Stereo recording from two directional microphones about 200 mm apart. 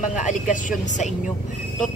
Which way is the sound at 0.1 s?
40° left (ahead or behind).